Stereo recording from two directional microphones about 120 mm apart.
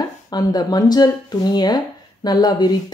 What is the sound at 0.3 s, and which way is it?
Speech, 35° left (ahead or behind).